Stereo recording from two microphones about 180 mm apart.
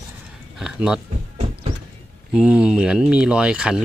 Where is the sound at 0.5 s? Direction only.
5° right (ahead or behind).